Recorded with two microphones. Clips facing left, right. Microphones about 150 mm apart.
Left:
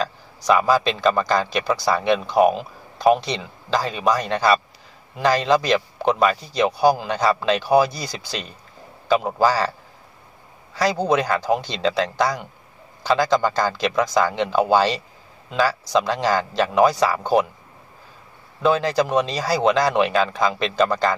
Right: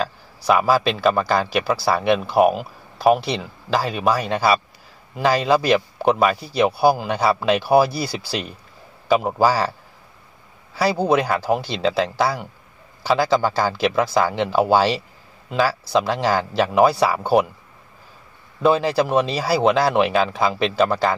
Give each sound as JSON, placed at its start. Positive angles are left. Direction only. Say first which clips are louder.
{"t": 0.0, "sound": "a man's voice", "louder": "right 1 dB", "side_deg": -10}
{"t": 18.6, "sound": "a man's voice", "louder": "right 1 dB", "side_deg": -10}